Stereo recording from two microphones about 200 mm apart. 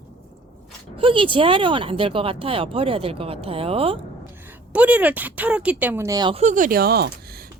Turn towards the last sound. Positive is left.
turn(degrees=-50)  # may be behind; listen again after turning